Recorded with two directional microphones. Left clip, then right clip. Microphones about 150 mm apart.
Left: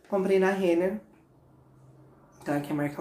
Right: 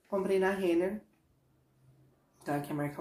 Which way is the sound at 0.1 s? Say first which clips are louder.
Left 5 dB; 5° right (ahead or behind).